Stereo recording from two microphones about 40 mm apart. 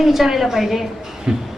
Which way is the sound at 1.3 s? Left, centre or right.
Right.